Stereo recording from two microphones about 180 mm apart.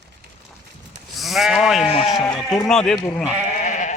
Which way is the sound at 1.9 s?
30° left (ahead or behind).